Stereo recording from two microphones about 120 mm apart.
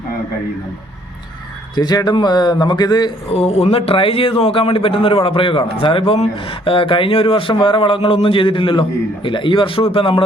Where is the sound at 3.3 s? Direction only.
60° left (ahead or behind).